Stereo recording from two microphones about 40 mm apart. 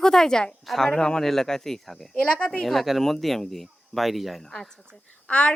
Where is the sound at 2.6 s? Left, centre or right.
Centre.